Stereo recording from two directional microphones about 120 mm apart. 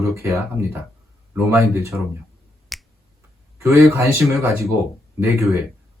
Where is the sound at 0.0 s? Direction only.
25° right (ahead or behind).